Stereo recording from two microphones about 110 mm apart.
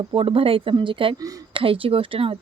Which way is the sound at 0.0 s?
55° right (ahead or behind).